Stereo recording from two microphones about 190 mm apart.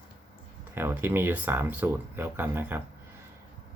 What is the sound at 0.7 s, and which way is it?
Speech, 10° right (ahead or behind).